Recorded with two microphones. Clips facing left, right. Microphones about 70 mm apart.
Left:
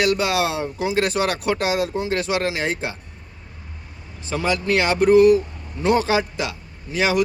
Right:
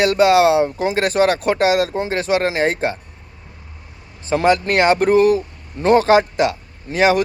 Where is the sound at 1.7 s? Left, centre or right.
Right.